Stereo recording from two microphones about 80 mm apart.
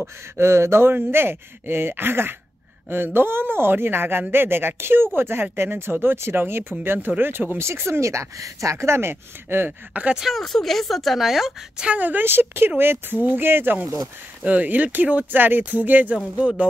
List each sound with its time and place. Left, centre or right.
0.0 s a man's voice: right
10.1 s a woman's voice: centre
11.9 s a man's voice: right